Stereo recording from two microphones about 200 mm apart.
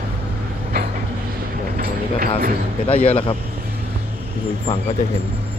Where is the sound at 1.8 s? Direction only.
50° right (ahead or behind).